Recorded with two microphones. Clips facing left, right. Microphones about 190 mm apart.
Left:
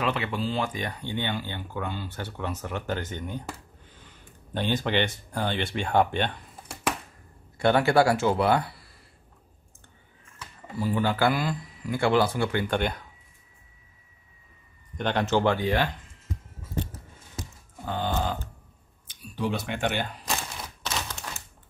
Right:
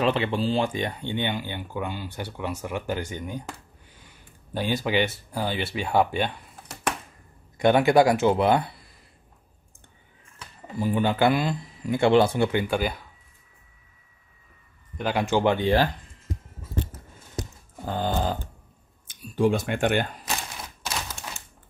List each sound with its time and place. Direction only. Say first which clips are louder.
0.0 s speech: right 5 dB; 30° right (ahead or behind); by 6.3 s 5° right (ahead or behind)
7.5 s speech: right 3 dB; 15° right (ahead or behind)
10.8 s speech: right 2 dB; 20° right (ahead or behind)
12.6 s speech: right 1 dB; 5° right (ahead or behind)
15.0 s speech: right 1 dB; 10° right (ahead or behind)
17.8 s a sound: right 2 dB; 40° right (ahead or behind)
19.0 s speech: right 7 dB; 50° right (ahead or behind)
20.8 s typewriter: even; 10° right (ahead or behind)